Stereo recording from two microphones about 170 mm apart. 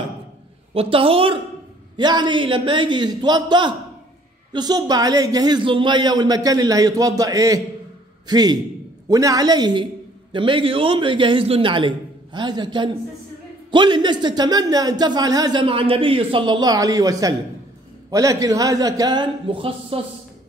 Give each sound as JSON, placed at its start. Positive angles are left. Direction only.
{"t": 0.7, "sound": "a woman's voice", "side_deg": -35}